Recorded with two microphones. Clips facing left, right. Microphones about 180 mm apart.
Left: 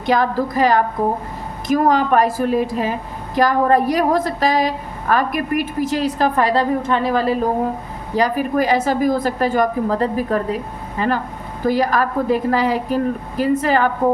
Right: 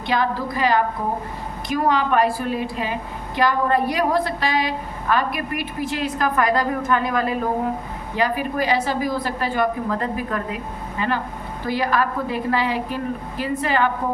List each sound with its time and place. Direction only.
0.0 s a woman's voice: 45° left (ahead or behind)